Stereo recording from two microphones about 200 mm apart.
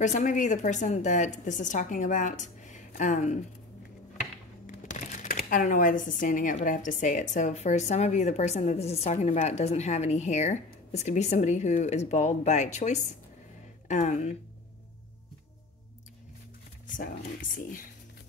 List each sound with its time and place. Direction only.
0.0 s speech: 35° left (ahead or behind)
4.6 s speech: 35° left (ahead or behind)
16.8 s a sound: 40° left (ahead or behind)
17.6 s speech: 45° left (ahead or behind)